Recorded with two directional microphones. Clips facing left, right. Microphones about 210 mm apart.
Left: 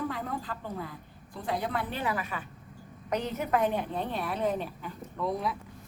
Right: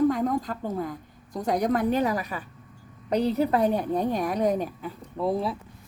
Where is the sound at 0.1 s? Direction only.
40° right (ahead or behind).